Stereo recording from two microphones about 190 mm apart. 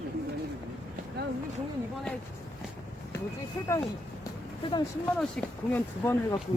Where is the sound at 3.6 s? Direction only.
15° left (ahead or behind).